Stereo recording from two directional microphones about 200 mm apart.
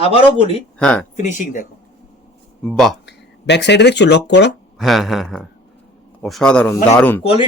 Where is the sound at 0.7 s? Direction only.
5° left (ahead or behind).